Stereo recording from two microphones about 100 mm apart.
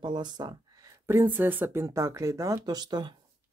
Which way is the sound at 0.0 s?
45° right (ahead or behind).